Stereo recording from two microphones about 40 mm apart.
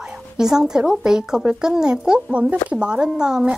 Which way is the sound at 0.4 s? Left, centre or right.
Centre.